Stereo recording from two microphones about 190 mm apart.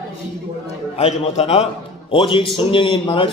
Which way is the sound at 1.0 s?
30° left (ahead or behind).